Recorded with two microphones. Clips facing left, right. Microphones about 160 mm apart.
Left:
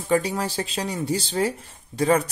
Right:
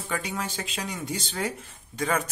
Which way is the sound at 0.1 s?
35° left (ahead or behind).